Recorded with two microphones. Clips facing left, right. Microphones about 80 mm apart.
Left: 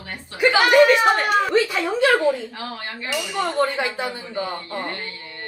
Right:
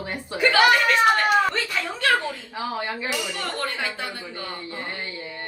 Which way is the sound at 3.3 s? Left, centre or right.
Centre.